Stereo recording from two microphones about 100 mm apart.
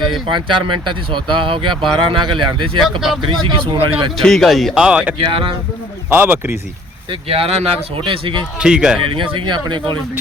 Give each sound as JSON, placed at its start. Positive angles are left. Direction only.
{"t": 0.3, "sound": "speech", "side_deg": -55}
{"t": 4.2, "sound": "speech", "side_deg": 5}
{"t": 5.1, "sound": "speech", "side_deg": -65}
{"t": 6.1, "sound": "speech", "side_deg": -20}
{"t": 7.1, "sound": "speech", "side_deg": -75}
{"t": 8.0, "sound": "speech", "side_deg": -60}
{"t": 8.5, "sound": "speech", "side_deg": -10}
{"t": 9.0, "sound": "speech", "side_deg": -60}